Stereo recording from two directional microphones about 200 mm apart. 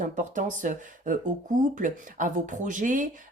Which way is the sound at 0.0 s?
40° right (ahead or behind).